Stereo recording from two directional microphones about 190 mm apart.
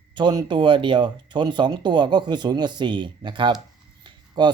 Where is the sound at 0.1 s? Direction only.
25° right (ahead or behind).